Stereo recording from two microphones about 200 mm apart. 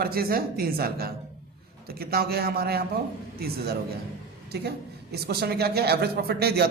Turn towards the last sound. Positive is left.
turn(degrees=-55)  # may be behind; listen again after turning